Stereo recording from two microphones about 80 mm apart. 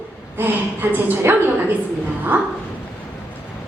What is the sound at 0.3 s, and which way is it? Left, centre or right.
A woman's voice, right.